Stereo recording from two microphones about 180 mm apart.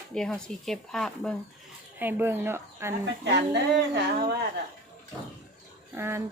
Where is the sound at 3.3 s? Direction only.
75° right (ahead or behind).